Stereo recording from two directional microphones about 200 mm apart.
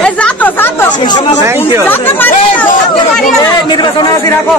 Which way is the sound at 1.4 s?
15° right (ahead or behind).